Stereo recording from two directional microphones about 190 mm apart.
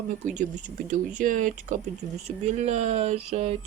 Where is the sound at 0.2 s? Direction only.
40° right (ahead or behind).